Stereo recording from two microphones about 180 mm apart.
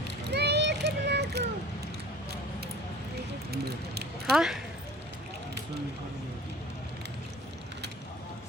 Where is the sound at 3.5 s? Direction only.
60° right (ahead or behind).